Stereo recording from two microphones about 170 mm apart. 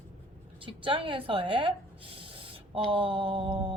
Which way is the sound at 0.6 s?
30° right (ahead or behind).